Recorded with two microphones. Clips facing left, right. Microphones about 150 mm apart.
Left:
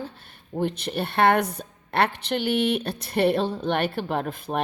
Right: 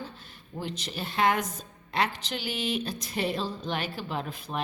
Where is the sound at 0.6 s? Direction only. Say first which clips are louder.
Left 9 dB; 55° left (ahead or behind).